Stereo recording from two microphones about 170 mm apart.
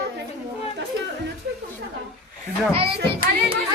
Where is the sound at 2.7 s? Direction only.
35° right (ahead or behind).